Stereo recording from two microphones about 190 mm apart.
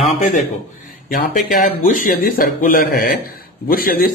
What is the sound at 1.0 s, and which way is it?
A man's voice, 50° left (ahead or behind).